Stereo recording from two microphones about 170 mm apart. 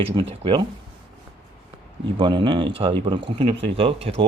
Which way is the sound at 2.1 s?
30° right (ahead or behind).